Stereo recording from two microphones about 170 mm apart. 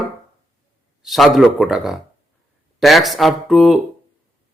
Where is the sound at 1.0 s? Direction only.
Centre (ahead or behind).